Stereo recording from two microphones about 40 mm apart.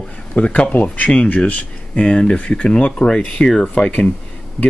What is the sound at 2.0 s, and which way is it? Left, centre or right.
Speech, left.